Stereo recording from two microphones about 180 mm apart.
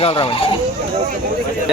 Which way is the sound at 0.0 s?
30° left (ahead or behind).